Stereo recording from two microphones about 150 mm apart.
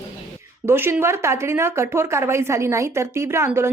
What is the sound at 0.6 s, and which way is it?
Speech, 15° right (ahead or behind).